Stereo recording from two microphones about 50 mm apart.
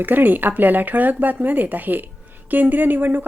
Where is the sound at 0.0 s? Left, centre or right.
Right.